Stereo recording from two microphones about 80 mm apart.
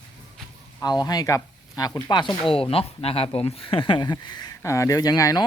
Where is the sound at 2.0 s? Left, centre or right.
Left.